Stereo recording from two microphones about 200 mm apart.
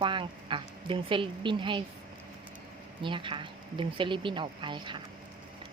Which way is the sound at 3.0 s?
25° right (ahead or behind).